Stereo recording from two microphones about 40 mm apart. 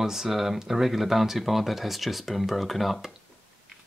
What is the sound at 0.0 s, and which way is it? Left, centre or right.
Speech, centre.